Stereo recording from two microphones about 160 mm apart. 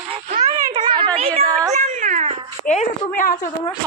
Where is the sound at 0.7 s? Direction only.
30° right (ahead or behind).